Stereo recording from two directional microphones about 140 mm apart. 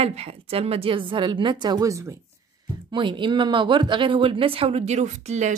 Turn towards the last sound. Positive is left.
turn(degrees=-55)  # may be behind; listen again after turning